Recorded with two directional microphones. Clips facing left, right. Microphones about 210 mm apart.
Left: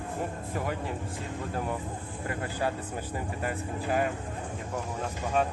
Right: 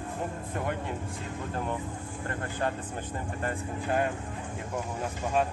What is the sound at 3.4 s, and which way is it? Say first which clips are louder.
Speech: right 1 dB; 5° left (ahead or behind).